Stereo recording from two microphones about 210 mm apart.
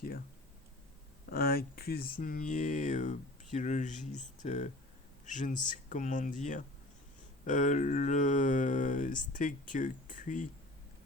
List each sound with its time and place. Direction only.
1.3 s a man's voice: 45° left (ahead or behind)